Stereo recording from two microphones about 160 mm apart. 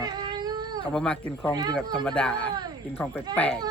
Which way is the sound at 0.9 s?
5° left (ahead or behind).